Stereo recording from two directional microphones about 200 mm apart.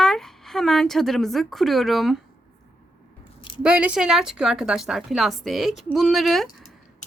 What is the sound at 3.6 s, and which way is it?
Speech, 5° right (ahead or behind).